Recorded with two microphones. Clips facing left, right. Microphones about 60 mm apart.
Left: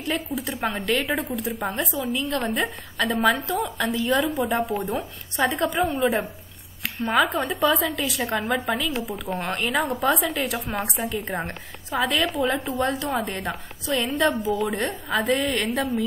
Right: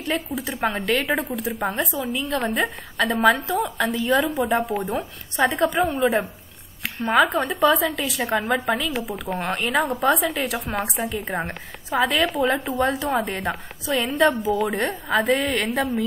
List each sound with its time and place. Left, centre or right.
0.0 s speech: centre
8.4 s a woman's voice: centre
8.6 s speech: centre